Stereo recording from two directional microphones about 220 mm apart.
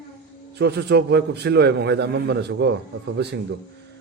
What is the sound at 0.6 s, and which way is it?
A man's voice, 50° right (ahead or behind).